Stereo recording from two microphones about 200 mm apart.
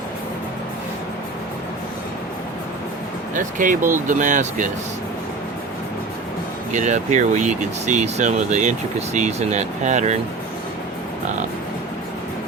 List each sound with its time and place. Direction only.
3.3 s speech: 40° right (ahead or behind)
6.7 s speech: 35° right (ahead or behind)